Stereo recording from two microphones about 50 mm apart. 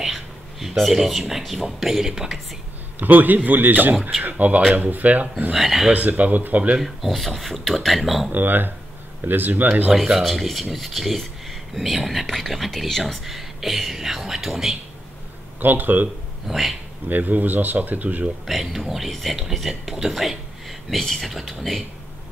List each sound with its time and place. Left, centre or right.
0.0 s a sound: centre
1.6 s speech: centre
3.0 s speech: right
5.5 s speech: centre
5.9 s speech: right
6.8 s speech: centre
8.3 s speech: right
9.9 s speech: centre
13.1 s speech: centre
15.6 s speech: right
16.4 s speech: centre
17.1 s speech: right
18.5 s speech: centre